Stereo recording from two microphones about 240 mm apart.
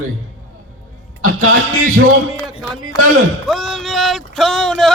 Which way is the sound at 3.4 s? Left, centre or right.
Centre.